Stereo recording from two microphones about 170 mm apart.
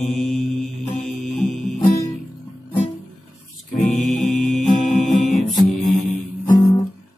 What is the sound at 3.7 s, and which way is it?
Music, 50° left (ahead or behind).